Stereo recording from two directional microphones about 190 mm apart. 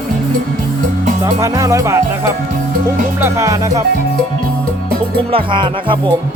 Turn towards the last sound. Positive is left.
turn(degrees=-25)  # may be behind; listen again after turning